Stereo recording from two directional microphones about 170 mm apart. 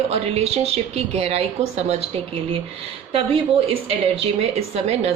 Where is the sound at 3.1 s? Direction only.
35° right (ahead or behind).